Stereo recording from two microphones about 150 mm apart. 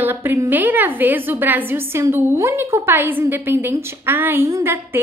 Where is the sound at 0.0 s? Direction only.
15° right (ahead or behind).